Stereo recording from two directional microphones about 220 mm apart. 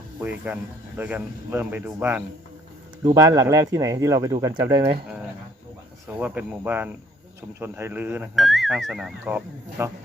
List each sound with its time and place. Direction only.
0.2 s speech: 5° right (ahead or behind)
6.1 s speech: 5° right (ahead or behind)